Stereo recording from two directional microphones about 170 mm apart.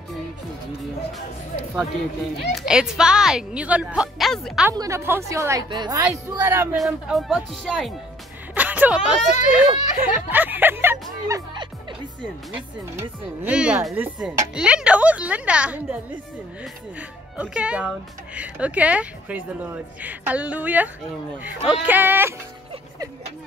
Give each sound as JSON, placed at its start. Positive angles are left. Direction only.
{"t": 2.5, "sound": "a woman's voice", "side_deg": -5}
{"t": 4.6, "sound": "a woman's voice", "side_deg": -15}
{"t": 6.4, "sound": "speech", "side_deg": -10}
{"t": 6.8, "sound": "a woman's voice", "side_deg": 0}
{"t": 11.2, "sound": "music", "side_deg": -25}
{"t": 12.5, "sound": "speech", "side_deg": -10}
{"t": 17.4, "sound": "speech", "side_deg": -5}